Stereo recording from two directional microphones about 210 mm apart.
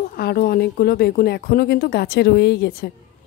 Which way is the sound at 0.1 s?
45° left (ahead or behind).